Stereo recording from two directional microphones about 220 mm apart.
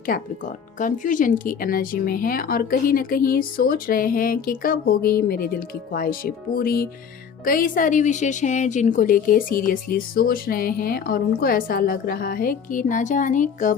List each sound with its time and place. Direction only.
0.0 s speech: 40° left (ahead or behind)